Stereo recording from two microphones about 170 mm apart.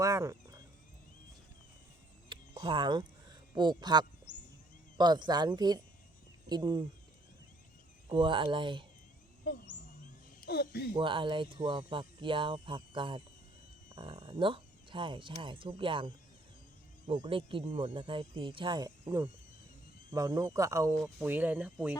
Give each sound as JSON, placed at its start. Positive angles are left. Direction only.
{"t": 0.0, "sound": "a sound", "side_deg": -20}
{"t": 2.3, "sound": "a sound", "side_deg": -30}
{"t": 4.9, "sound": "speech", "side_deg": -25}
{"t": 8.1, "sound": "speech", "side_deg": -30}
{"t": 10.4, "sound": "speech", "side_deg": 65}
{"t": 10.9, "sound": "speech", "side_deg": -30}
{"t": 20.9, "sound": "speech", "side_deg": 0}
{"t": 21.2, "sound": "speech", "side_deg": -10}